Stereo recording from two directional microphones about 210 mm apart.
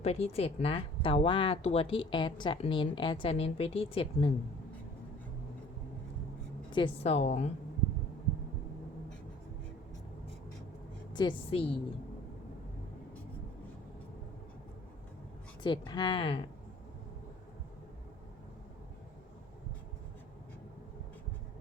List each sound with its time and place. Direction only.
0.0 s speech: 30° left (ahead or behind)
6.7 s a woman's voice: 25° left (ahead or behind)
11.1 s speech: 20° left (ahead or behind)
15.6 s speech: 20° left (ahead or behind)